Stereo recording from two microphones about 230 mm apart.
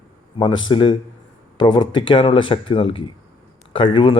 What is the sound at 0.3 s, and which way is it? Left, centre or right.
Speech, left.